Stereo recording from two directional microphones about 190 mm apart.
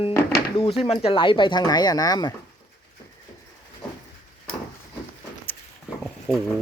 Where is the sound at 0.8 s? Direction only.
30° left (ahead or behind).